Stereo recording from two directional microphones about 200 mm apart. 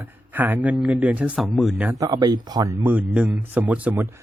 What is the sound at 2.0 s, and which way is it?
Speech, 20° right (ahead or behind).